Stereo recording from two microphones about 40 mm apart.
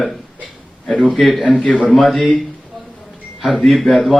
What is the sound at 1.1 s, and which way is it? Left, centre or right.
A man's voice, centre.